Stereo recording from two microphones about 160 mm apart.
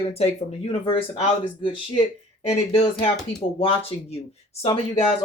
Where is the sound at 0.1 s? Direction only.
40° left (ahead or behind).